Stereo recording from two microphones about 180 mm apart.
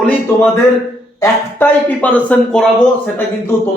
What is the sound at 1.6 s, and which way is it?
Speech, 10° left (ahead or behind).